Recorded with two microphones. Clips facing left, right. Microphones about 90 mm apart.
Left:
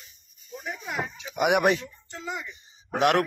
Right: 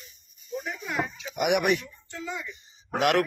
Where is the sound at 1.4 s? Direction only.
40° left (ahead or behind).